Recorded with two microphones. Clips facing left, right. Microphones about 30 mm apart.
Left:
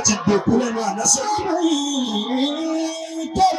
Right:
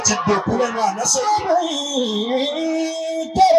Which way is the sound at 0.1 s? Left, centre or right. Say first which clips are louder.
Left 1 dB; centre.